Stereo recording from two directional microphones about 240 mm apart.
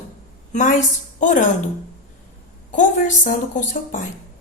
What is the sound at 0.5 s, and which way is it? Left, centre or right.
Speech, left.